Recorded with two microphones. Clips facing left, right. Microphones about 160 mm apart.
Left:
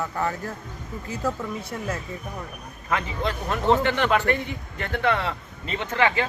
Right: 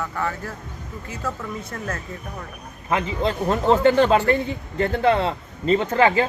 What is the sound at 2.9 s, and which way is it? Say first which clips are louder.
A man's voice: right 4 dB; 25° right (ahead or behind).